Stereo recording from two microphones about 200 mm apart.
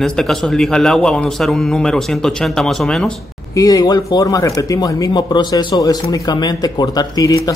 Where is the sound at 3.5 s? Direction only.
20° left (ahead or behind).